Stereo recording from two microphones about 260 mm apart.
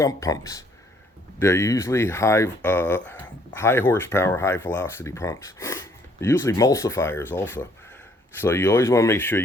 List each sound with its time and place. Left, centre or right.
0.0 s speech: centre